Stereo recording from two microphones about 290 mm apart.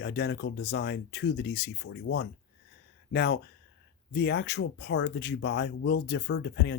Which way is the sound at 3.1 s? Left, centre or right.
Left.